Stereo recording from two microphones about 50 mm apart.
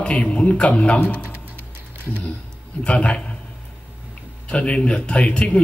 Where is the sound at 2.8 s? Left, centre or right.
Left.